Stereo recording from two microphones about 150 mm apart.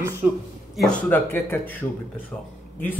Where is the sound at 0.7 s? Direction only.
5° left (ahead or behind).